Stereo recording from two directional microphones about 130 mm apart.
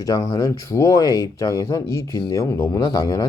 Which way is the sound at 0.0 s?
25° left (ahead or behind).